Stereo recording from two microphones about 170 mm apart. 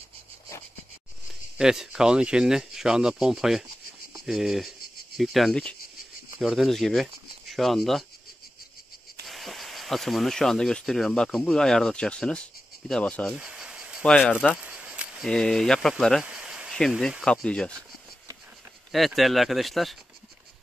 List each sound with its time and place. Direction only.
1.6 s speech: 5° right (ahead or behind)
9.3 s speech: centre (ahead or behind)
13.4 s cricket: 5° right (ahead or behind)
14.0 s speech: 10° left (ahead or behind)
18.9 s speech: centre (ahead or behind)